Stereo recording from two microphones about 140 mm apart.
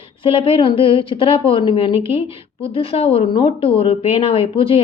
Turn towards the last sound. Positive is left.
turn(degrees=40)  # may be behind; listen again after turning